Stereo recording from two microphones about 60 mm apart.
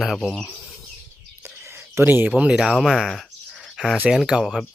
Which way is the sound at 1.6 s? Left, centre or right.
Right.